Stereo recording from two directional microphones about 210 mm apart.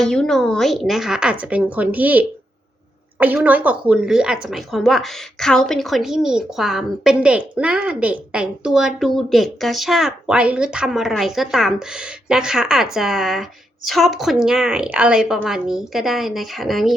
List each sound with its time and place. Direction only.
0.0 s a woman's voice: 5° left (ahead or behind)